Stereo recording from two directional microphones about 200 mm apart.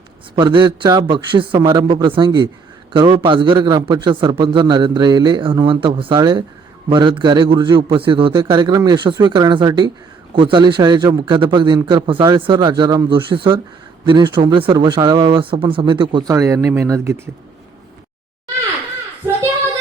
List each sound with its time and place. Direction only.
0.3 s a man's voice: 25° right (ahead or behind)